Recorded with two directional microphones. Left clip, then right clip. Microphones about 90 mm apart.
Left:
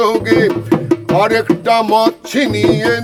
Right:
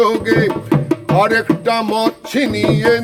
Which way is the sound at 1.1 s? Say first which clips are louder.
Even; 40° left (ahead or behind).